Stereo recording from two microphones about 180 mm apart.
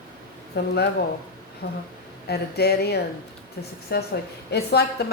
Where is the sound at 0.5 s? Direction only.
65° left (ahead or behind).